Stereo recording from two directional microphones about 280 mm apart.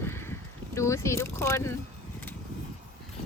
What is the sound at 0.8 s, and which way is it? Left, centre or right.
Speech, centre.